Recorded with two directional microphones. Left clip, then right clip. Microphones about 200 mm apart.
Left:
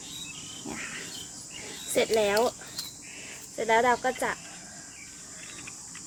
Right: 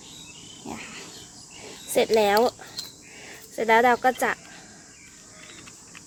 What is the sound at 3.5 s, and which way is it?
Speech, 40° right (ahead or behind).